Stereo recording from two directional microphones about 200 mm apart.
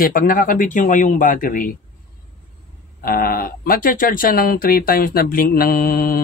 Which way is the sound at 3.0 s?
45° left (ahead or behind).